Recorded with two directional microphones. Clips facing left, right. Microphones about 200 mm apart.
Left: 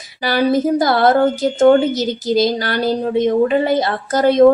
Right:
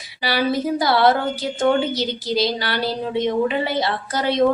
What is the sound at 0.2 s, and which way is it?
A woman's voice, 45° left (ahead or behind).